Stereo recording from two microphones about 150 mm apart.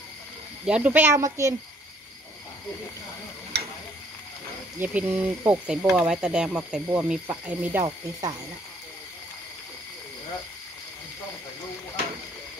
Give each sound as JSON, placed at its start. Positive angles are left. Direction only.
{"t": 0.7, "sound": "speech", "side_deg": -10}
{"t": 4.7, "sound": "speech", "side_deg": -10}
{"t": 7.8, "sound": "speech", "side_deg": -25}